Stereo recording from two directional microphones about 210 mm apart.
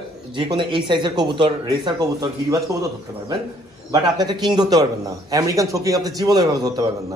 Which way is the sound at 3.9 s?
20° right (ahead or behind).